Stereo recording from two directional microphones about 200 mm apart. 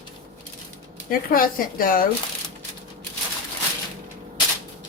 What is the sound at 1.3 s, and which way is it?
Speech, 45° left (ahead or behind).